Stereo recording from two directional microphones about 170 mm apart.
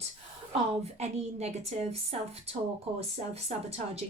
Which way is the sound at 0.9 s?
40° right (ahead or behind).